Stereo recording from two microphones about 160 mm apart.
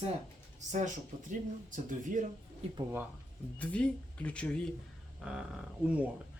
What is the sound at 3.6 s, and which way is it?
Speech, 10° left (ahead or behind).